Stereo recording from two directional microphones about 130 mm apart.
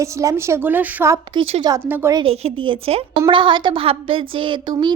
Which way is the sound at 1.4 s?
40° right (ahead or behind).